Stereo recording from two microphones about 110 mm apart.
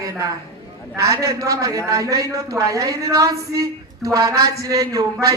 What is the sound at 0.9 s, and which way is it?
A woman's voice, 30° right (ahead or behind).